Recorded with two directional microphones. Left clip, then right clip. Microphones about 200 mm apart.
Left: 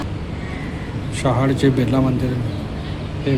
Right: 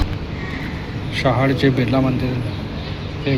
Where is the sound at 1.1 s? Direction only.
10° left (ahead or behind).